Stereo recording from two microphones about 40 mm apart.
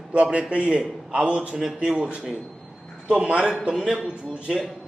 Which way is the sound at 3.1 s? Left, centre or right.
Right.